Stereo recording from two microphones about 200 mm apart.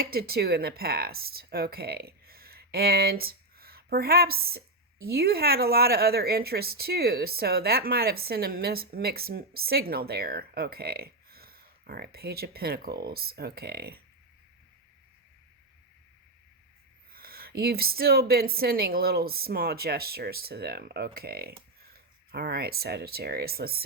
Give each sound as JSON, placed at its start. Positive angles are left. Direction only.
{"t": 0.0, "sound": "speech", "side_deg": -50}
{"t": 17.1, "sound": "speech", "side_deg": -50}